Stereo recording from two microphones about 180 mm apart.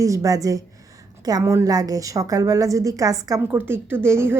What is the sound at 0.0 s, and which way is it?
A woman's voice, 20° right (ahead or behind).